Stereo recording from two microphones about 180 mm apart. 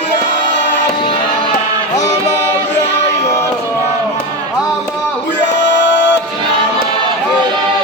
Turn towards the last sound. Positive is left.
turn(degrees=90)